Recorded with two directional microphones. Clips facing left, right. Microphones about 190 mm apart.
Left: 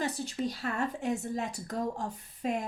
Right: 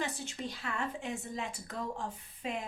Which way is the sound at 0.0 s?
40° left (ahead or behind).